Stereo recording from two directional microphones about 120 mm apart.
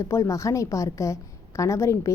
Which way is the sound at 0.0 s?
25° left (ahead or behind).